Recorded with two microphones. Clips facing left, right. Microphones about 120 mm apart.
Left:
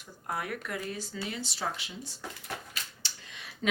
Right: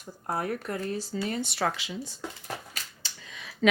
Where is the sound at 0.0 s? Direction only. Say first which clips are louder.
Right 5 dB; 40° right (ahead or behind); by 1.9 s 80° right.